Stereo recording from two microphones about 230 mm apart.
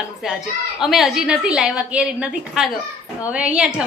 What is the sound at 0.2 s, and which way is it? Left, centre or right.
A woman's voice, centre.